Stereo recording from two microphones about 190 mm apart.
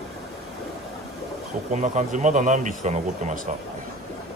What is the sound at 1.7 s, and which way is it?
Speech, 40° right (ahead or behind).